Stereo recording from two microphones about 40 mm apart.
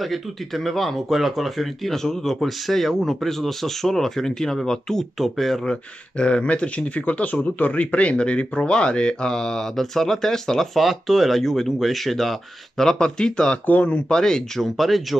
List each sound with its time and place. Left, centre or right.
0.0 s speech: centre
5.2 s speech: centre
5.7 s speech: left; by 10.8 s centre
10.8 s speech: centre; by 13.6 s left
13.7 s speech: left
14.1 s speech: centre
14.6 s speech: centre